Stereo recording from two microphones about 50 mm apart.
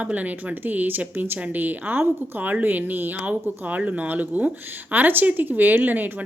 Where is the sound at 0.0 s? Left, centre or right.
Right.